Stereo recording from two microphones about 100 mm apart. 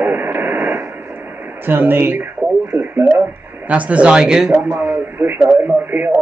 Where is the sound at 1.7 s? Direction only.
20° right (ahead or behind).